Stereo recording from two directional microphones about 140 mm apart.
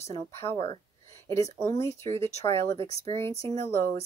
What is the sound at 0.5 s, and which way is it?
Speech, 35° left (ahead or behind).